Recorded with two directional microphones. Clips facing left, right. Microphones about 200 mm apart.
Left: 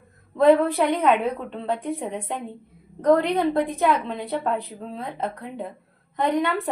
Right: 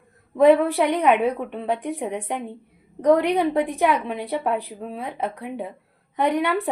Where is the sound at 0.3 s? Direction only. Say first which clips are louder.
Right 1 dB; 15° right (ahead or behind).